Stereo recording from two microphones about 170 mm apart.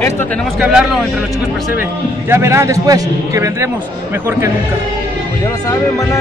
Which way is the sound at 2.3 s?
15° right (ahead or behind).